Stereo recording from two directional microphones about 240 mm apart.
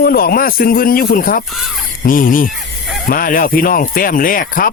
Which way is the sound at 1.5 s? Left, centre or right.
Centre.